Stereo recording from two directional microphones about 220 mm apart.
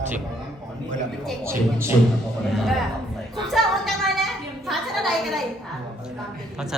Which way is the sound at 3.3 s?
Centre (ahead or behind).